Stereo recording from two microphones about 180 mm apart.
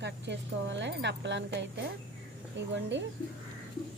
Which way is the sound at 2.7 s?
85° right.